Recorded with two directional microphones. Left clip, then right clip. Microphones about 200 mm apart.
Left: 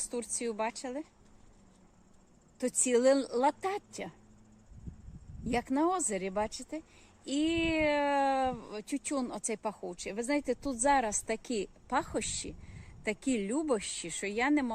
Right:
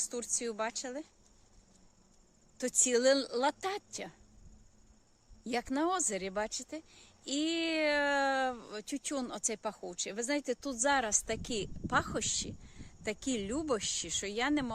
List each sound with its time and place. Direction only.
0.0 s speech: 5° right (ahead or behind)
2.6 s speech: 5° right (ahead or behind)
5.5 s speech: 5° right (ahead or behind)
13.2 s speech: 60° right (ahead or behind)
13.5 s speech: 5° right (ahead or behind)